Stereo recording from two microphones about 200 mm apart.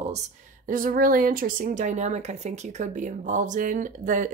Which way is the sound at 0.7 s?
45° right (ahead or behind).